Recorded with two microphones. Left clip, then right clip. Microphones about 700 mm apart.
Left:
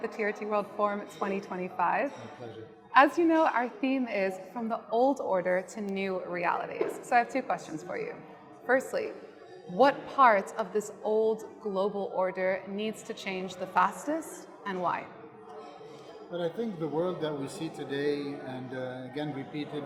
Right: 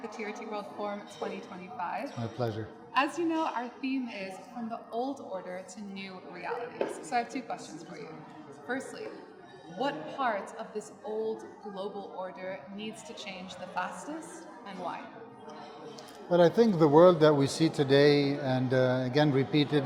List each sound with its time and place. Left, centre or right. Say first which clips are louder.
0.2 s a woman's voice: left 8 dB; left
16.3 s speech: right 10 dB; right